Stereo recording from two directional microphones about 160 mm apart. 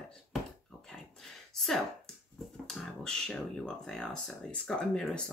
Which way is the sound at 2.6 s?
Centre (ahead or behind).